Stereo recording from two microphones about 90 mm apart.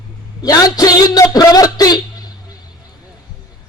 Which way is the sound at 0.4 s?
45° left (ahead or behind).